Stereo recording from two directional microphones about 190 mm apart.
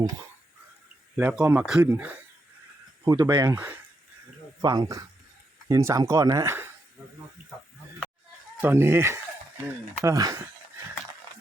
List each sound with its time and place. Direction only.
1.1 s speech: 10° right (ahead or behind)
3.0 s speech: 20° right (ahead or behind)
8.6 s speech: 10° right (ahead or behind)